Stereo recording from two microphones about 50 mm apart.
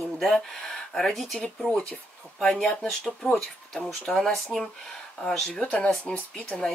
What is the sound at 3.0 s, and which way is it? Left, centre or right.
Speech, centre.